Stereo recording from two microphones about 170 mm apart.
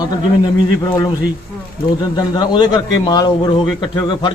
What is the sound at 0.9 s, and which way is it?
A man's voice, 20° left (ahead or behind).